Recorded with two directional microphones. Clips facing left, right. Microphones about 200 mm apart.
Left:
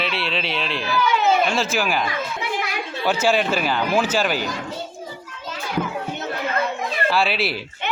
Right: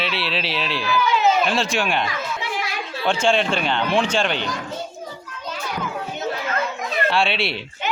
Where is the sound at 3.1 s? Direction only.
5° left (ahead or behind).